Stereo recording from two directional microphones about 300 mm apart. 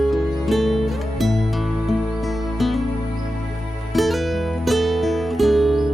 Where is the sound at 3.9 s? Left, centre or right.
Centre.